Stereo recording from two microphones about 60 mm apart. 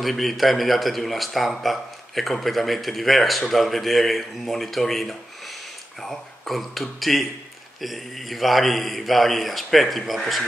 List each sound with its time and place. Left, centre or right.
0.0 s speech: centre